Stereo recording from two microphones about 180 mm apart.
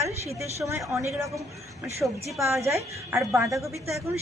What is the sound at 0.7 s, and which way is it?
Speech, 15° right (ahead or behind).